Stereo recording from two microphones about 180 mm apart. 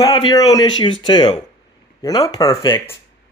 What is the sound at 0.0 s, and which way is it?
Speech, 20° left (ahead or behind).